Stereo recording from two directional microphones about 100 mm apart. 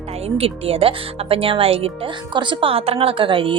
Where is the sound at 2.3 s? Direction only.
50° right (ahead or behind).